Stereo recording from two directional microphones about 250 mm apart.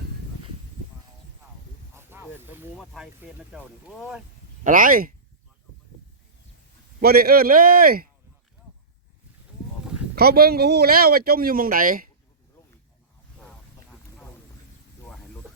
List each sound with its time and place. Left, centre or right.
2.0 s a sound: centre
3.5 s speech: centre
4.6 s speech: right
7.0 s speech: right
9.8 s a sound: centre
10.2 s speech: right